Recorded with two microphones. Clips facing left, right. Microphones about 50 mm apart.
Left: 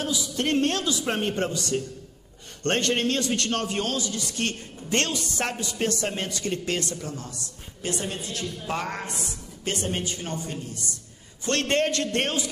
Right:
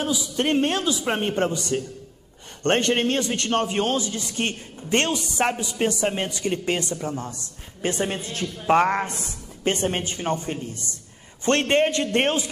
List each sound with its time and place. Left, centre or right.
0.0 s a man's voice: centre